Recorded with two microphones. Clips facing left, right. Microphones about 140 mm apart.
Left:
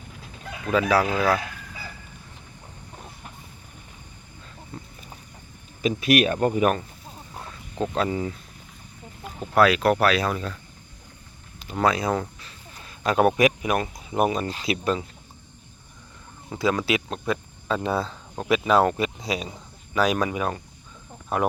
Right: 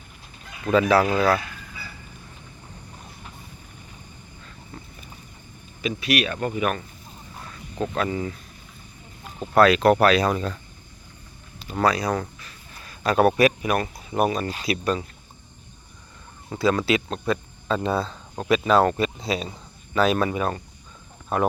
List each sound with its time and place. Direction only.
0.7 s speech: 10° left (ahead or behind)
5.8 s speech: 45° left (ahead or behind)
7.8 s speech: 25° left (ahead or behind)
9.6 s speech: 5° left (ahead or behind)
10.2 s speech: 10° right (ahead or behind)
11.6 s speech: 15° left (ahead or behind)
16.5 s speech: 15° left (ahead or behind)